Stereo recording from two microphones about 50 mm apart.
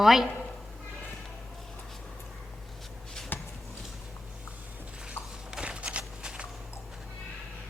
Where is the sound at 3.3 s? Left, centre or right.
Left.